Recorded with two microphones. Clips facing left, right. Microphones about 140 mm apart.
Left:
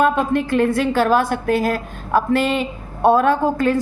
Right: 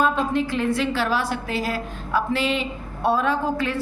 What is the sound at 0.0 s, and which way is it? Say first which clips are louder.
A woman's voice: left 4 dB; 55° left (ahead or behind).